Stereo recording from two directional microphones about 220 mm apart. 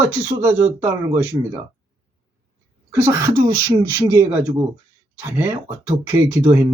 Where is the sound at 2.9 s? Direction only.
15° right (ahead or behind).